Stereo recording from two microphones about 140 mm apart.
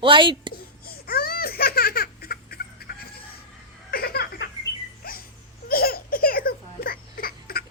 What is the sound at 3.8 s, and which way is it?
Giggle, 90° left.